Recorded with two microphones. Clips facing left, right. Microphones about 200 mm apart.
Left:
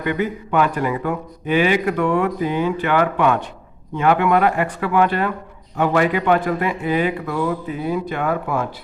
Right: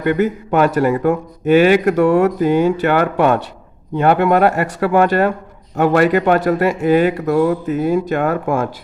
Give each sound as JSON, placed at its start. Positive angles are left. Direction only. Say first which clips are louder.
{"t": 0.0, "sound": "speech", "louder": "right 6 dB", "side_deg": -45}